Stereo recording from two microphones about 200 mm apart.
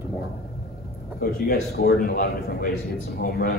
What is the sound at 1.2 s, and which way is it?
A man's voice, 50° left (ahead or behind).